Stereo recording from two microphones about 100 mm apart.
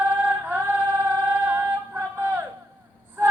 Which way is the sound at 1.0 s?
20° right (ahead or behind).